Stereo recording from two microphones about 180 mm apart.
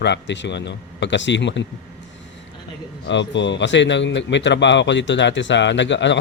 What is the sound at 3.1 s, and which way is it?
Speech, 80° left.